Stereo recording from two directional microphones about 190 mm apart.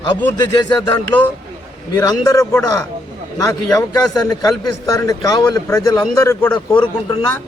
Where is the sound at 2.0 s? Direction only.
20° left (ahead or behind).